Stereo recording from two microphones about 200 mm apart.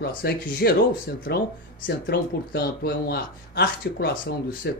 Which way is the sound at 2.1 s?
50° left (ahead or behind).